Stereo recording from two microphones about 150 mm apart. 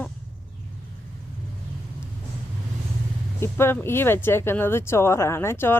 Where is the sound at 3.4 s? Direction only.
15° left (ahead or behind).